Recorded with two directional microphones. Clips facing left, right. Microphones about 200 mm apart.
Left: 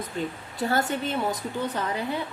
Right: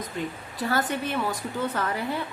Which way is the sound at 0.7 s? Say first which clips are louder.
Even; 25° left (ahead or behind).